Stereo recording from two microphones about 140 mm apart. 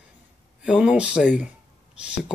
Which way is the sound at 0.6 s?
5° right (ahead or behind).